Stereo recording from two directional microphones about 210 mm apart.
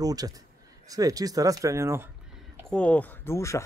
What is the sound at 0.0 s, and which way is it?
Speech, 15° right (ahead or behind).